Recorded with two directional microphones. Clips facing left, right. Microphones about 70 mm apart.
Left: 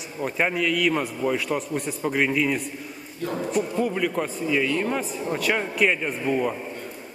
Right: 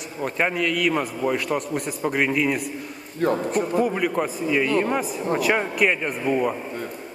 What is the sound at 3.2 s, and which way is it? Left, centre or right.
Speech, right.